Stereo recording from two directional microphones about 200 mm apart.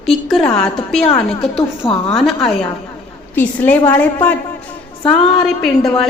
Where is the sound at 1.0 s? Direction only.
30° left (ahead or behind).